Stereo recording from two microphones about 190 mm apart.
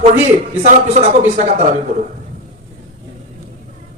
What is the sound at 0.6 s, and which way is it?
A man's voice, 35° right (ahead or behind).